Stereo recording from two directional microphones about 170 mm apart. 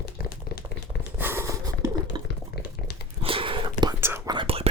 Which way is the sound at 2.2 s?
25° right (ahead or behind).